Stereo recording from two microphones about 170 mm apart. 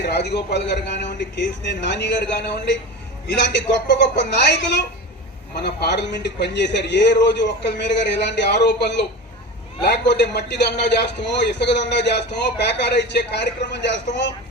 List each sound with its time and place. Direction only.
0.0 s a man's voice: 80° left